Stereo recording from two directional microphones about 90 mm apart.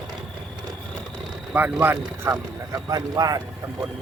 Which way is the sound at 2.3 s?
40° right (ahead or behind).